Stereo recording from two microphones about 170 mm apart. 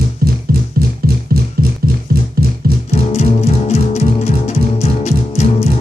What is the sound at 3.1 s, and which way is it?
Music, 40° left (ahead or behind).